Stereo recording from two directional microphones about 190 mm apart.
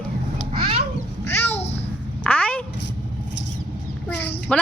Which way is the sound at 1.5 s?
35° left (ahead or behind).